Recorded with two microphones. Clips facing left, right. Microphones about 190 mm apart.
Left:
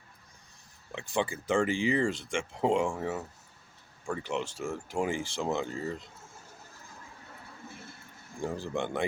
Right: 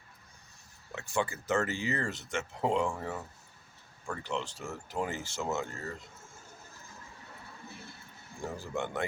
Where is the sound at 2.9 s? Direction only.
10° left (ahead or behind).